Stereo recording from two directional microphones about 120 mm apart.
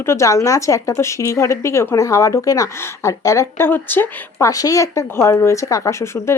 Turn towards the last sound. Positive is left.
turn(degrees=20)  # may be behind; listen again after turning